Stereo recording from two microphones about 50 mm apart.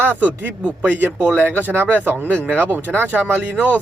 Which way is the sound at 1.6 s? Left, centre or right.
Right.